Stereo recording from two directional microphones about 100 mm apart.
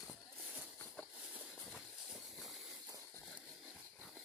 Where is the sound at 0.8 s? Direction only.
15° left (ahead or behind).